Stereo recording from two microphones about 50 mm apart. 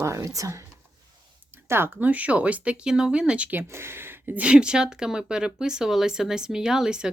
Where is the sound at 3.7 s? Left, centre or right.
Right.